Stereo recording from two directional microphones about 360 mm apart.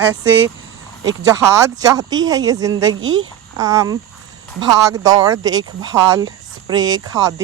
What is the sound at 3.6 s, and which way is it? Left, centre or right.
Speech, centre.